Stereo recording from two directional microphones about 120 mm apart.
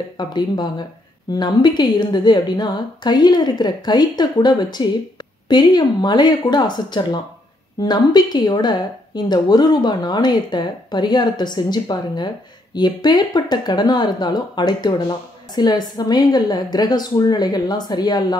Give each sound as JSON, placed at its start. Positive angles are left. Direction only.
{"t": 0.2, "sound": "speech", "side_deg": 40}